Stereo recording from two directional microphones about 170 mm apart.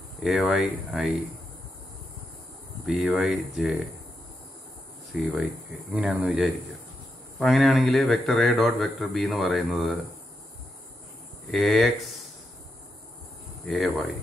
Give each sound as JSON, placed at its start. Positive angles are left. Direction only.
{"t": 0.2, "sound": "a man's voice", "side_deg": 0}
{"t": 2.9, "sound": "a man's voice", "side_deg": 0}
{"t": 5.2, "sound": "a man's voice", "side_deg": 0}
{"t": 11.4, "sound": "a man's voice", "side_deg": 0}
{"t": 13.7, "sound": "a man's voice", "side_deg": 0}